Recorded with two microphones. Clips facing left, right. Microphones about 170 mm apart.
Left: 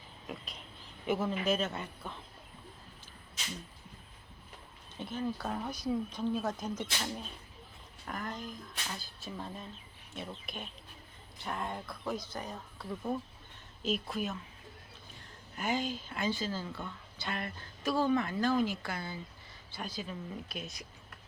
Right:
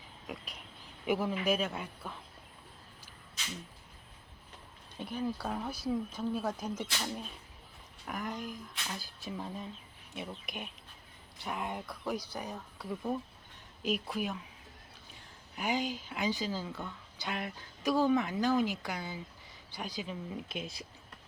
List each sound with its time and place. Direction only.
0.3 s a woman's voice: 10° right (ahead or behind)
4.9 s a woman's voice: 10° right (ahead or behind)
15.5 s a woman's voice: 15° right (ahead or behind)